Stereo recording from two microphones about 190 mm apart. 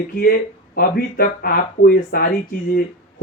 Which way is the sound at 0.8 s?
50° left (ahead or behind).